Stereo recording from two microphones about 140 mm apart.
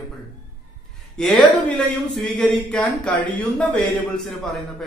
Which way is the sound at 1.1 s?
5° left (ahead or behind).